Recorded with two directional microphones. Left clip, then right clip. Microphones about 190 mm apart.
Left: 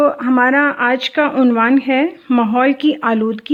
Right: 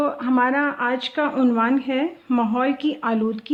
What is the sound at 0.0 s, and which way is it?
A woman's voice, 25° left (ahead or behind).